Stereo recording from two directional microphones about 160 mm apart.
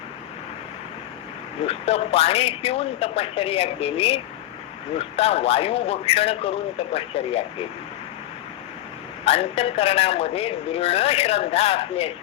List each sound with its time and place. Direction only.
1.6 s speech: 40° left (ahead or behind)
9.2 s speech: 40° left (ahead or behind)